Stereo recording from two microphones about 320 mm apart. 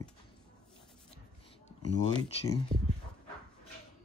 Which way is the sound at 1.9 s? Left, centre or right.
Centre.